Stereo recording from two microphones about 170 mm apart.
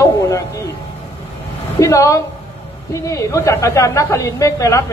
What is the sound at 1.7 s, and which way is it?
A woman's voice, 15° left (ahead or behind).